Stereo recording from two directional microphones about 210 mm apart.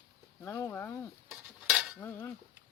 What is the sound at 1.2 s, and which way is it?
Stir, 5° right (ahead or behind).